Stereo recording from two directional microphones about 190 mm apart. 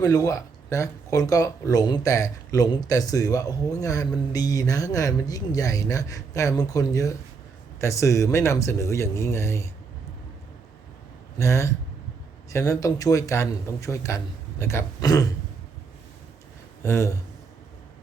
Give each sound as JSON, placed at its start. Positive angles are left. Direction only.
{"t": 0.0, "sound": "speech", "side_deg": 20}
{"t": 11.3, "sound": "speech", "side_deg": 15}
{"t": 16.8, "sound": "speech", "side_deg": 15}